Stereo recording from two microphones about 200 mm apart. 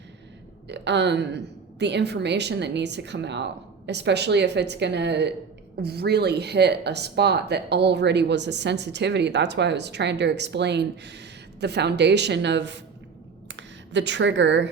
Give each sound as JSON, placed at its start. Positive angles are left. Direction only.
{"t": 0.7, "sound": "a woman's voice", "side_deg": -60}